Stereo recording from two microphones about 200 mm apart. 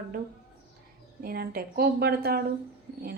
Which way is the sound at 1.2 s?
50° right (ahead or behind).